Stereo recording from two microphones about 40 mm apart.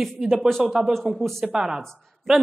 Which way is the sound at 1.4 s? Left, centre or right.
Centre.